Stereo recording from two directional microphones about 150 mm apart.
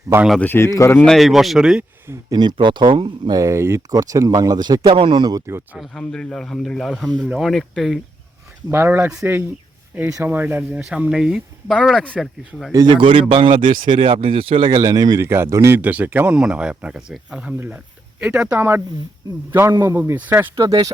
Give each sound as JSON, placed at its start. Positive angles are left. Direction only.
{"t": 0.3, "sound": "speech", "side_deg": 10}
{"t": 1.0, "sound": "speech", "side_deg": 0}
{"t": 2.0, "sound": "speech", "side_deg": -25}
{"t": 5.7, "sound": "speech", "side_deg": 0}
{"t": 8.7, "sound": "speech", "side_deg": -15}
{"t": 12.7, "sound": "speech", "side_deg": -30}
{"t": 14.7, "sound": "speech", "side_deg": -25}